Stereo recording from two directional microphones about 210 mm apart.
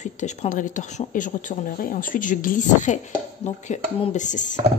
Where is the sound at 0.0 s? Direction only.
35° left (ahead or behind).